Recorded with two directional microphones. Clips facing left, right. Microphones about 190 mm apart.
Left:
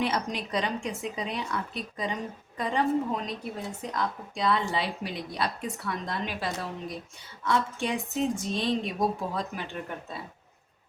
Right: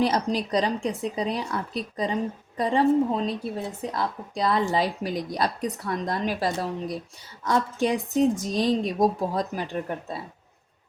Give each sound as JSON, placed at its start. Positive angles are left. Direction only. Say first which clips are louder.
{"t": 0.0, "sound": "a woman's voice", "louder": "right 6 dB", "side_deg": -35}